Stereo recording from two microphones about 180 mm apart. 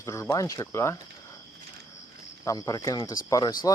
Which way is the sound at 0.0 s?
15° left (ahead or behind).